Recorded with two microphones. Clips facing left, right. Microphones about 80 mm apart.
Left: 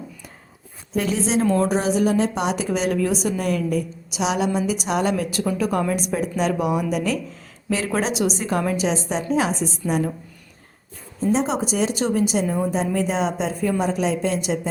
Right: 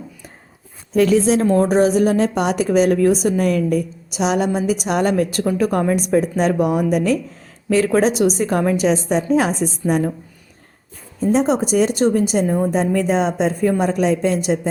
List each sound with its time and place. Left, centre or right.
0.9 s speech: right
1.4 s a woman's voice: right
11.3 s a woman's voice: right